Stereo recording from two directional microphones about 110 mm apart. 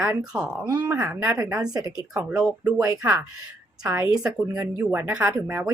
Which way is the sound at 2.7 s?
30° right (ahead or behind).